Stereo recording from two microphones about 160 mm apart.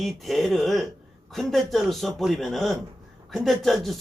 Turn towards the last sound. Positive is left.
turn(degrees=0)  # may be behind; listen again after turning